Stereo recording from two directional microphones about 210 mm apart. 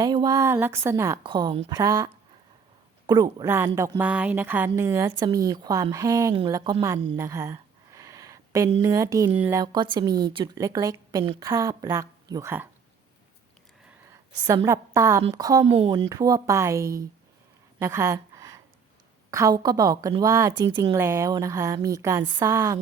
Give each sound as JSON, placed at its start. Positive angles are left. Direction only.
{"t": 0.0, "sound": "a woman's voice", "side_deg": -20}
{"t": 3.1, "sound": "speech", "side_deg": -20}
{"t": 7.2, "sound": "a sound", "side_deg": -15}
{"t": 8.8, "sound": "speech", "side_deg": -15}
{"t": 14.1, "sound": "a woman's voice", "side_deg": -15}
{"t": 17.7, "sound": "a sound", "side_deg": -15}
{"t": 19.3, "sound": "speech", "side_deg": -15}